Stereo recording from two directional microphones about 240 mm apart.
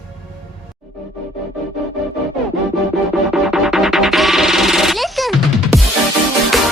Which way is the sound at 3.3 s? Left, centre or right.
Centre.